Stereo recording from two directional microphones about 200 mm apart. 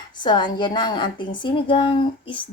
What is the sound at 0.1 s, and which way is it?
A woman's voice, 20° left (ahead or behind).